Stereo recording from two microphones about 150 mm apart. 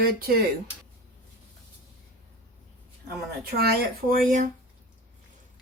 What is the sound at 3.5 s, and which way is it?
Speech, 80° right.